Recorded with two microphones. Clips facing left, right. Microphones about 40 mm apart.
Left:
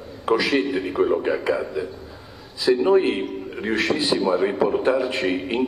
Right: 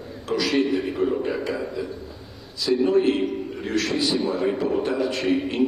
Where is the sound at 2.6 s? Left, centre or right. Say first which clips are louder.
Left 3 dB; left.